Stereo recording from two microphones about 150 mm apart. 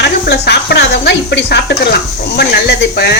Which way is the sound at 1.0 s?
90° left.